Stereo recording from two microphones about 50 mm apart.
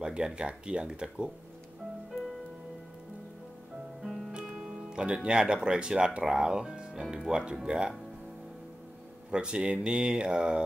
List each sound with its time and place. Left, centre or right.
0.0 s speech: centre
4.0 s music: centre
4.3 s speech: centre
9.3 s speech: centre